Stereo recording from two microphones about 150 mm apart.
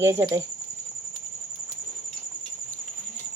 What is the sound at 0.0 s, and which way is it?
Speech, 20° right (ahead or behind).